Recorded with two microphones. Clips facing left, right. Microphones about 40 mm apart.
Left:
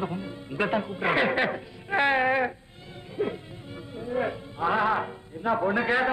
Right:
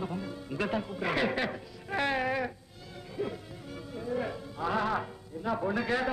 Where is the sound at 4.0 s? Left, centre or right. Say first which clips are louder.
Left 5 dB; left.